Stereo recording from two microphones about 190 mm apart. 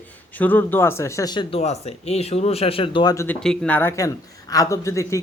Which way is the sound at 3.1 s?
10° left (ahead or behind).